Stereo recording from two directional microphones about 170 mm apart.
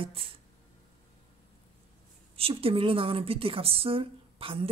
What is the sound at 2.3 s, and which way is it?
A woman's voice, 35° right (ahead or behind).